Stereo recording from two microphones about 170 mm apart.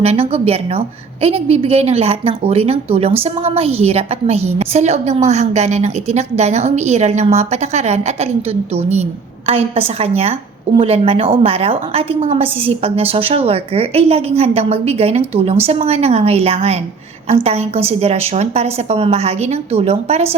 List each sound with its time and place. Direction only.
0.0 s a woman's voice: 35° right (ahead or behind)